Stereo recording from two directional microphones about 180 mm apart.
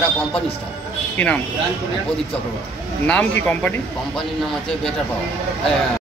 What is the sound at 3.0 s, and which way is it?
Speech, 5° left (ahead or behind).